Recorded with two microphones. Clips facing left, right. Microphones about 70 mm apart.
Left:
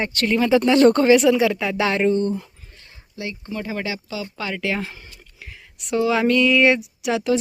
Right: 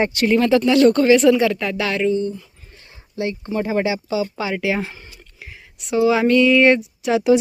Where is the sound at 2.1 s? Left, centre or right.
Left.